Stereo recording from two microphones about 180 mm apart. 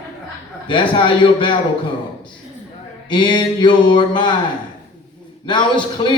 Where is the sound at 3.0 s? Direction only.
25° left (ahead or behind).